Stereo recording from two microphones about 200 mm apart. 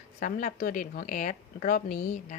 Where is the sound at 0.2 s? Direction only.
40° left (ahead or behind).